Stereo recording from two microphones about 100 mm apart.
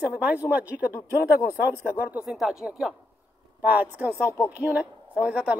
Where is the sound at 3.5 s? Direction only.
15° right (ahead or behind).